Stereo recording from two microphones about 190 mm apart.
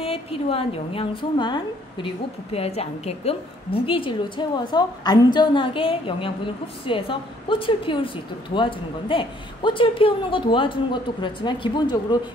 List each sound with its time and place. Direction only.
0.0 s a woman's voice: 30° left (ahead or behind)